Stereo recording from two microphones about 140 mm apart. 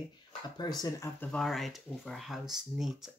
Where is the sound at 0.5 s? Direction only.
30° left (ahead or behind).